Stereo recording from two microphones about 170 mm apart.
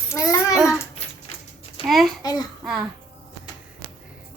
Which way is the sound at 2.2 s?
25° left (ahead or behind).